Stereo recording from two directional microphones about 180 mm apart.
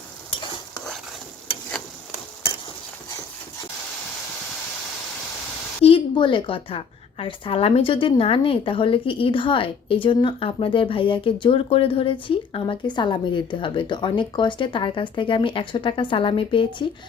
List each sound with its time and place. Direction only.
5.8 s a woman's voice: 30° left (ahead or behind)